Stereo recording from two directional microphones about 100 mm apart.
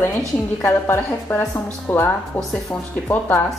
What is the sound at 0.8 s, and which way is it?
A woman's voice, 20° left (ahead or behind).